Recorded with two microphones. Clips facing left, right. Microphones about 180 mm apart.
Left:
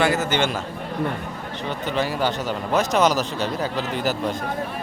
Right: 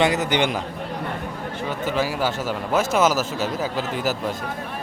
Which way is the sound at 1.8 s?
5° right (ahead or behind).